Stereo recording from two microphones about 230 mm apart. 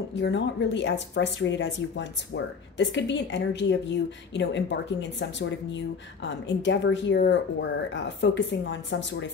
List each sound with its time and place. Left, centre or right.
0.1 s speech: left